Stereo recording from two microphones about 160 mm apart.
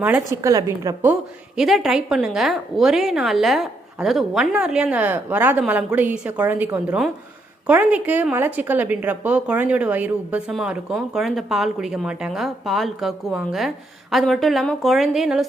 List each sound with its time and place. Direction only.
0.4 s a woman's voice: 20° right (ahead or behind)
1.5 s a woman's voice: centre (ahead or behind)